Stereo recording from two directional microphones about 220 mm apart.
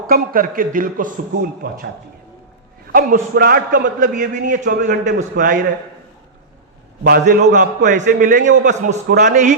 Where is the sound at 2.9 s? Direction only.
40° right (ahead or behind).